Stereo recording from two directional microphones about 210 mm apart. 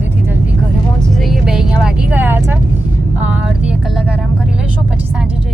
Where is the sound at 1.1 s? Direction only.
Centre (ahead or behind).